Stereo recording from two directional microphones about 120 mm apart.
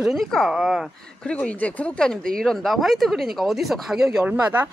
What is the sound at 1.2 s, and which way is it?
Speech, 10° left (ahead or behind).